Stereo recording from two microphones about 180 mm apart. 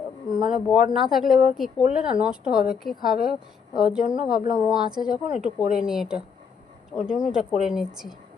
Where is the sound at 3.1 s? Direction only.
55° left (ahead or behind).